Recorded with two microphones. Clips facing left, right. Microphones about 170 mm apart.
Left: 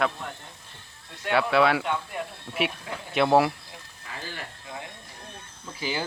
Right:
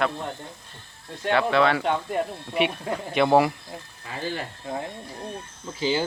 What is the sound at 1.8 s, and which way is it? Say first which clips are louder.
Speech: right 5 dB; 40° right (ahead or behind).